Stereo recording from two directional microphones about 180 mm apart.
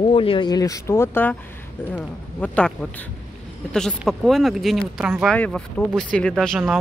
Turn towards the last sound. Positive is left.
turn(degrees=0)  # may be behind; listen again after turning